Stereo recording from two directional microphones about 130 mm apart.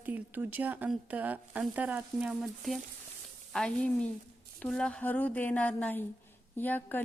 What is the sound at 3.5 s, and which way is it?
A woman's voice, 10° left (ahead or behind).